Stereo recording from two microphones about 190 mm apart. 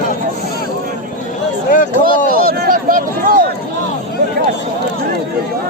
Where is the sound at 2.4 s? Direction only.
50° right (ahead or behind).